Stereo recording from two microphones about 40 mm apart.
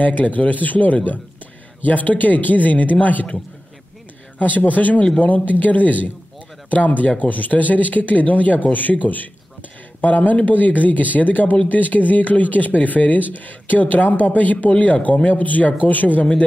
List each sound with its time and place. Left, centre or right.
0.0 s speech: left
4.4 s speech: left